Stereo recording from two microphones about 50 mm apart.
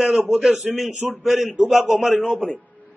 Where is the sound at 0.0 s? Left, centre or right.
Centre.